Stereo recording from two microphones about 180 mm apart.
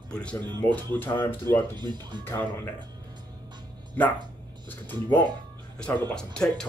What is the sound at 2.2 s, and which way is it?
Speech, 10° left (ahead or behind).